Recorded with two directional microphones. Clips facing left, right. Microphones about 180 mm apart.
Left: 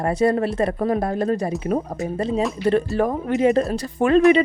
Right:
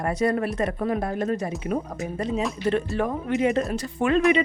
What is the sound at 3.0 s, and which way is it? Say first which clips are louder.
A woman's voice: left 4 dB; 40° left (ahead or behind).